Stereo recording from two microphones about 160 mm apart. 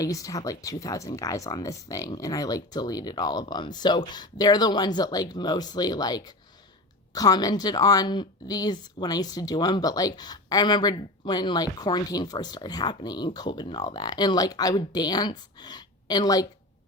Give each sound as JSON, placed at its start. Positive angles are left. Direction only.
{"t": 0.0, "sound": "a woman's voice", "side_deg": 20}